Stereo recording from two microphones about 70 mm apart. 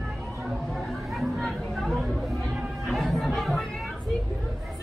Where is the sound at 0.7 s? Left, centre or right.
Centre.